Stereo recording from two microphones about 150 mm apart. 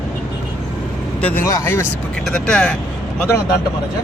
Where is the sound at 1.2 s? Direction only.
10° left (ahead or behind).